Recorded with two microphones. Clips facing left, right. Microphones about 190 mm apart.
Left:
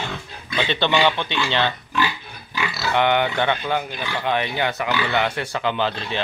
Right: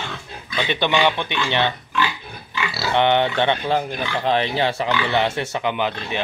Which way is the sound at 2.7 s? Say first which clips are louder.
Right 2 dB; 25° right (ahead or behind).